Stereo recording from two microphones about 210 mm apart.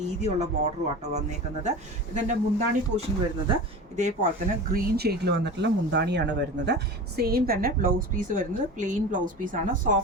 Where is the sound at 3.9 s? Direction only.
35° right (ahead or behind).